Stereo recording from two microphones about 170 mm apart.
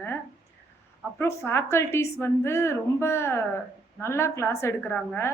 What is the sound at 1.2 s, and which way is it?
A woman's voice, 15° left (ahead or behind).